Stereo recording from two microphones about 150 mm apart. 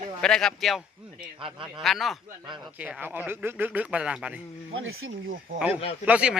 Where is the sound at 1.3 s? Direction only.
35° right (ahead or behind).